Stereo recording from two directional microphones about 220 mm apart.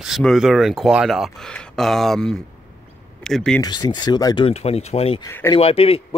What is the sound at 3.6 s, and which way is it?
Speech, 20° left (ahead or behind).